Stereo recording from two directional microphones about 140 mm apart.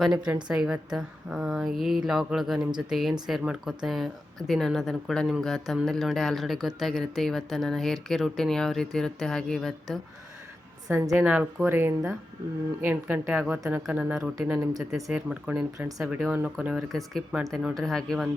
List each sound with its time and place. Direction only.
0.0 s speech: 5° right (ahead or behind)
10.8 s a woman's voice: 25° right (ahead or behind)
11.2 s speech: 10° right (ahead or behind)